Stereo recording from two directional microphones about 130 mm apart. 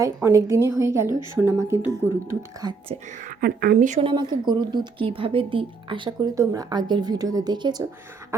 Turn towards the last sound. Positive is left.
turn(degrees=-35)  # may be behind; listen again after turning